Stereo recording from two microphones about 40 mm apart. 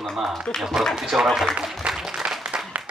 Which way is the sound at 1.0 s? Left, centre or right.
Centre.